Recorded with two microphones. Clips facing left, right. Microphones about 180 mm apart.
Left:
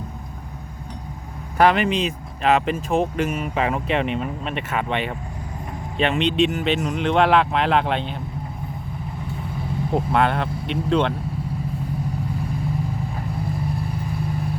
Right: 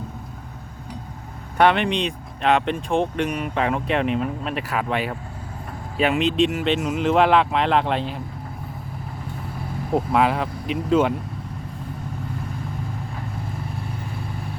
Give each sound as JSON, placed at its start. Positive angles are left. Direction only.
{"t": 1.5, "sound": "speech", "side_deg": 0}
{"t": 9.9, "sound": "speech", "side_deg": 0}